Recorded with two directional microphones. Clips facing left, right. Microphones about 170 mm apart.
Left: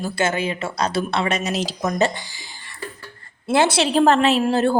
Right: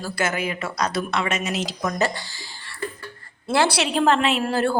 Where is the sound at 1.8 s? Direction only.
25° left (ahead or behind).